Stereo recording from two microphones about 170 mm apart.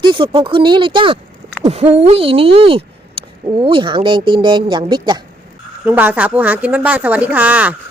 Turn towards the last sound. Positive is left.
turn(degrees=-10)  # may be behind; listen again after turning